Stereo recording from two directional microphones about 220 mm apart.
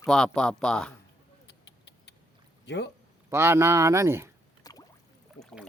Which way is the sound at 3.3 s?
10° right (ahead or behind).